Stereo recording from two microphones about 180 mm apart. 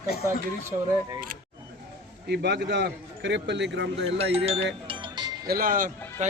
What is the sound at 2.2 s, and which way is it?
A man's voice, 65° right (ahead or behind).